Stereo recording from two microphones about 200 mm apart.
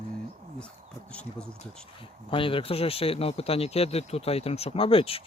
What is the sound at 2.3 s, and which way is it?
Speech, 25° left (ahead or behind).